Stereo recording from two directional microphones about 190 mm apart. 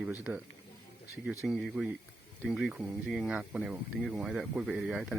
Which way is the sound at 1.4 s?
Centre (ahead or behind).